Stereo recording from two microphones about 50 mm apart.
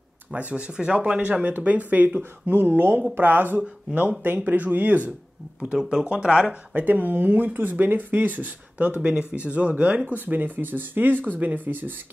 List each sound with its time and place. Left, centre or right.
0.3 s speech: right
5.9 s speech: centre
6.7 s speech: right